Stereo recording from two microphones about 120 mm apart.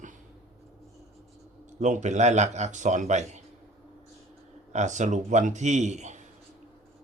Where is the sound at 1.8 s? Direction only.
85° right.